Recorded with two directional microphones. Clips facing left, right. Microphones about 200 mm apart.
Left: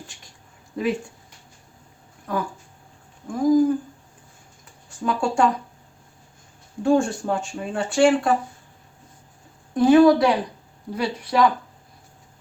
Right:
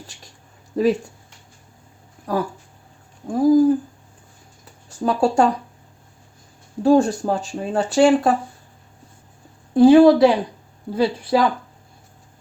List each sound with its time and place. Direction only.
0.7 s speech: 40° right (ahead or behind)
2.3 s speech: 35° right (ahead or behind)
5.0 s speech: 40° right (ahead or behind)
6.8 s speech: 35° right (ahead or behind)
9.7 s speech: 30° right (ahead or behind)